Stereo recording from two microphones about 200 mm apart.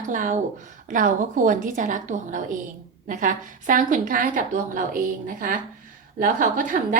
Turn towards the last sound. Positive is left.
turn(degrees=-40)  # may be behind; listen again after turning